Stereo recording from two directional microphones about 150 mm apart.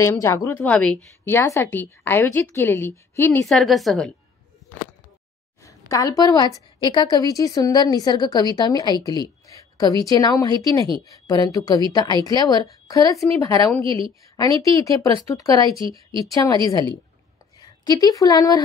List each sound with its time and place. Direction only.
0.0 s a woman's voice: 20° left (ahead or behind)
3.4 s a woman's voice: centre (ahead or behind)
5.6 s a woman's voice: 20° left (ahead or behind)
9.2 s a sound: 25° left (ahead or behind)
10.0 s a woman's voice: 25° left (ahead or behind)
13.8 s a woman's voice: 35° right (ahead or behind)
14.3 s a woman's voice: 25° left (ahead or behind)